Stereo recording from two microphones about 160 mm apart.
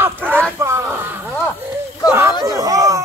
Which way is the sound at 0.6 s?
15° right (ahead or behind).